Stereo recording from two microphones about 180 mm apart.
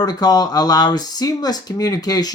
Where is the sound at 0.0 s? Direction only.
20° left (ahead or behind).